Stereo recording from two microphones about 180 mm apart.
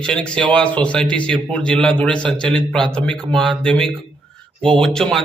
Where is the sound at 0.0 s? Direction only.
5° left (ahead or behind).